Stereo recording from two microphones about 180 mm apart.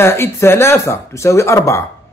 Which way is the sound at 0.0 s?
15° left (ahead or behind).